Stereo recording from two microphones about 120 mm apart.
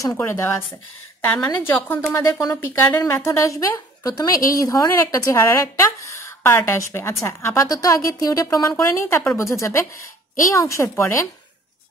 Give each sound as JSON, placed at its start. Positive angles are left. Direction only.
{"t": 0.2, "sound": "a woman's voice", "side_deg": 20}